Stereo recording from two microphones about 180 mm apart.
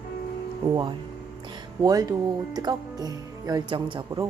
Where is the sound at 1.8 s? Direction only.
20° right (ahead or behind).